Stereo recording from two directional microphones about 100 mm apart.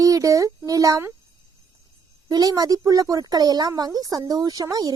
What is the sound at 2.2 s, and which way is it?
A woman's voice, 40° right (ahead or behind).